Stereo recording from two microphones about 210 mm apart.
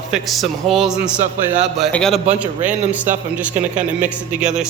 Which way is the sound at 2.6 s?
35° right (ahead or behind).